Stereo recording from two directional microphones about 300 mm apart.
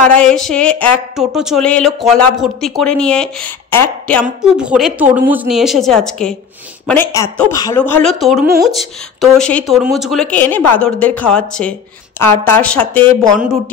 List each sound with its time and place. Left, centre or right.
0.1 s speech: centre